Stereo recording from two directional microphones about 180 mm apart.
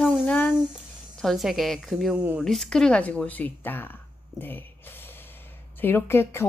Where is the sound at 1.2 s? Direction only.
Centre (ahead or behind).